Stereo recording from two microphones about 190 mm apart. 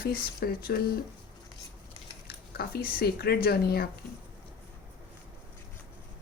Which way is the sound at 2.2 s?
55° left (ahead or behind).